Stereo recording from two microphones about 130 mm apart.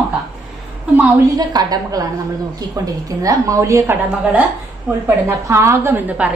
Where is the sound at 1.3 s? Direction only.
30° right (ahead or behind).